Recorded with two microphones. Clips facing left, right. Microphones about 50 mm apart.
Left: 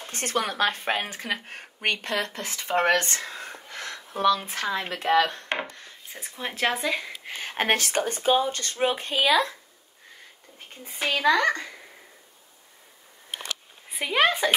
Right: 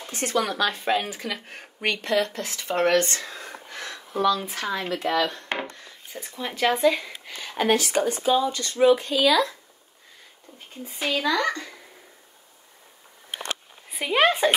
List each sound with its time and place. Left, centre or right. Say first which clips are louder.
0.1 s speech: right 2 dB; left
5.8 s a sound: right 2 dB; left
6.3 s speech: right 2 dB; left
6.7 s speech: right 6 dB; centre
7.2 s speech: right 2 dB; left
10.9 s speech: left 2 dB; left
13.8 s speech: right 1 dB; centre
14.2 s a woman's voice: right 2 dB; centre